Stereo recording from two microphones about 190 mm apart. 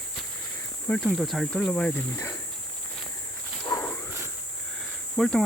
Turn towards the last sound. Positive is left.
turn(degrees=0)  # may be behind; listen again after turning